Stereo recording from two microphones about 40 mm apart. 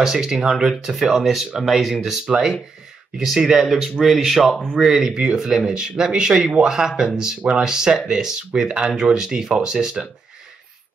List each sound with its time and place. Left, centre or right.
0.0 s speech: centre
4.8 s speech: centre